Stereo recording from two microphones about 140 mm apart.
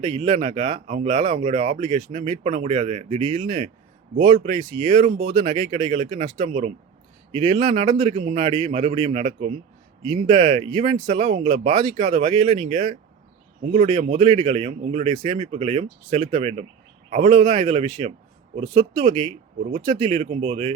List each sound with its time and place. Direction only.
0.0 s speech: 40° right (ahead or behind); by 10.7 s 60° right (ahead or behind)
10.7 s speech: 45° right (ahead or behind)